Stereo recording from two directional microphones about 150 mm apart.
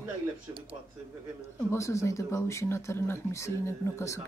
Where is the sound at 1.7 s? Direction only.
20° left (ahead or behind).